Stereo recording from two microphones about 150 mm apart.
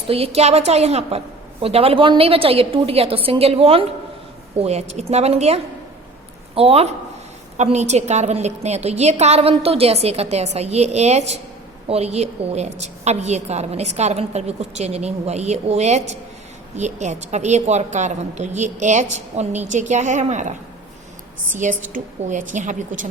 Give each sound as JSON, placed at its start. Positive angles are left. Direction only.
{"t": 0.1, "sound": "a woman's voice", "side_deg": -40}
{"t": 21.6, "sound": "a woman's voice", "side_deg": -60}